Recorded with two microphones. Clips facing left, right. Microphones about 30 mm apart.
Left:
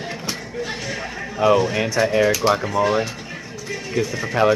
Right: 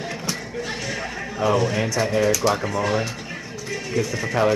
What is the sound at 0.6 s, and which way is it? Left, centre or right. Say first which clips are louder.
Music: left 3 dB; centre.